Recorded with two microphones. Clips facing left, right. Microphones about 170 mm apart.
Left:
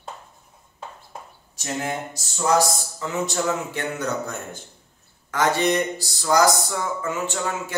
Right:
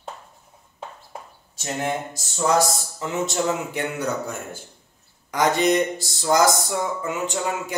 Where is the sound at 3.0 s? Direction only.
20° right (ahead or behind).